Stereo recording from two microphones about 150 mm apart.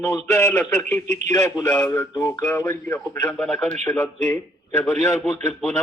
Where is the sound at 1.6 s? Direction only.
15° left (ahead or behind).